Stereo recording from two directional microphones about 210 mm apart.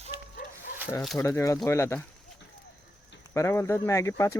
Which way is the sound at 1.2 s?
15° left (ahead or behind).